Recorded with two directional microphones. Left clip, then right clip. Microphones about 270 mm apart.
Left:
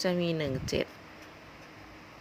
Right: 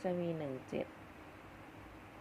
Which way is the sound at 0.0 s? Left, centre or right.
Left.